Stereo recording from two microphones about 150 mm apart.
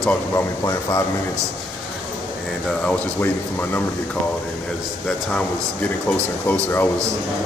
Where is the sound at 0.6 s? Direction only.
25° left (ahead or behind).